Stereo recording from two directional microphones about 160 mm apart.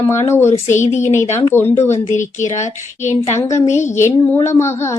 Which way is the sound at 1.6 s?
45° left (ahead or behind).